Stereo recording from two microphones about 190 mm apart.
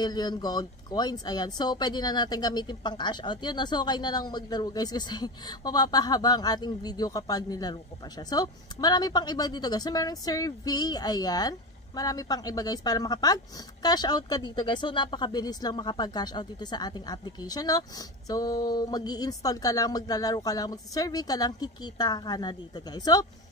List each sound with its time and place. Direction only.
0.0 s speech: 20° left (ahead or behind)